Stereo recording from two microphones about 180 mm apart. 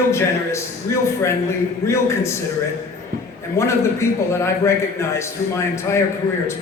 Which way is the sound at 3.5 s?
15° left (ahead or behind).